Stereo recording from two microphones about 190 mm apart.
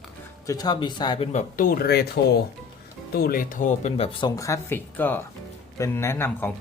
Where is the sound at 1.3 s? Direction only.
45° left (ahead or behind).